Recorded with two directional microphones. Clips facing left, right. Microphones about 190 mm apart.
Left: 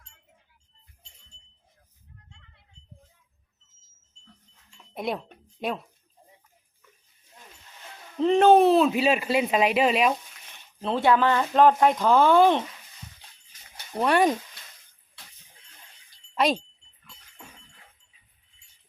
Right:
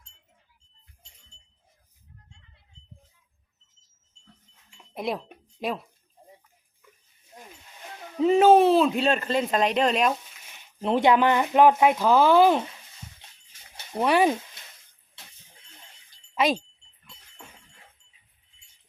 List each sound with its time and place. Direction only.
4.9 s speech: centre (ahead or behind)
7.3 s a sound: 40° right (ahead or behind)
8.2 s speech: 5° right (ahead or behind)
10.5 s speech: 15° right (ahead or behind)
13.9 s speech: 5° right (ahead or behind)
16.3 s wind chime: centre (ahead or behind)